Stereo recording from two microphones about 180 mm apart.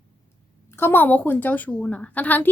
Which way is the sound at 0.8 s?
10° left (ahead or behind).